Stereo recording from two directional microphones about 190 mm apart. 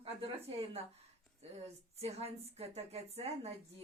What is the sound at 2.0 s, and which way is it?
A woman's voice, 35° right (ahead or behind).